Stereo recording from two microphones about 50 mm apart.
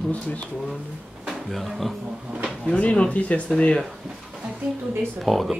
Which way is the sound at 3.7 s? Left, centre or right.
Centre.